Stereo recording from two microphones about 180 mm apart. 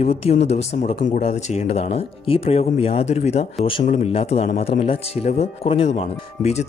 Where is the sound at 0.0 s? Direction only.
35° left (ahead or behind).